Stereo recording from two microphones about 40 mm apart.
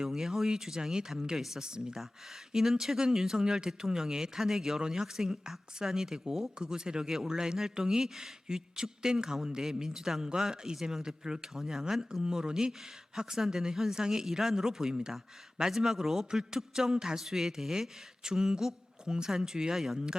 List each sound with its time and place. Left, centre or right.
0.0 s a man's voice: centre
1.6 s a man's voice: centre